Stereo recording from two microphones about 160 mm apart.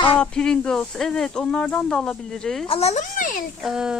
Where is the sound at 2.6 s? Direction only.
40° left (ahead or behind); by 3.4 s 55° left (ahead or behind).